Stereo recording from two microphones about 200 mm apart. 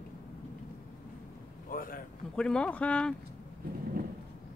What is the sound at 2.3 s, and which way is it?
Speech, 5° left (ahead or behind).